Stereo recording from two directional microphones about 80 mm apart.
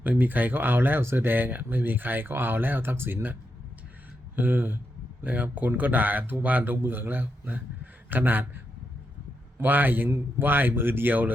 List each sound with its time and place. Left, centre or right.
0.0 s speech: right
4.4 s speech: right